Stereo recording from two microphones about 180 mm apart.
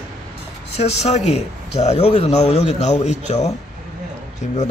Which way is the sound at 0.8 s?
40° left (ahead or behind).